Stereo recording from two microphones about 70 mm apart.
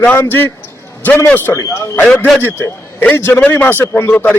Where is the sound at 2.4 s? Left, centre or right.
Left.